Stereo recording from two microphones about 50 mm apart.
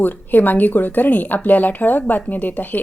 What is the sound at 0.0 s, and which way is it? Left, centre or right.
Speech, left.